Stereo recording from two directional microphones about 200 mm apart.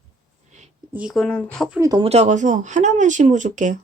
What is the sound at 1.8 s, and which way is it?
Speech, 20° right (ahead or behind).